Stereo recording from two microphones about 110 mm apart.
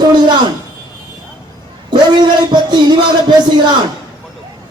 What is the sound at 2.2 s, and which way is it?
Speech, 40° right (ahead or behind).